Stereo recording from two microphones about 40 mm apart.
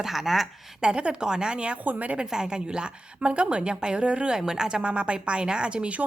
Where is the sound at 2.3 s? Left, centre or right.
Centre.